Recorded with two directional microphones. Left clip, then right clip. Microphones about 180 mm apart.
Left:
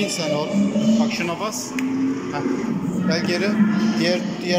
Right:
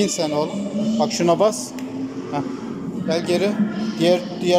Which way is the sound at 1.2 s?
40° right (ahead or behind).